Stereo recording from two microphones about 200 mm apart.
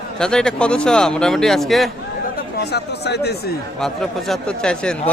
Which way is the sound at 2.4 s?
55° left (ahead or behind).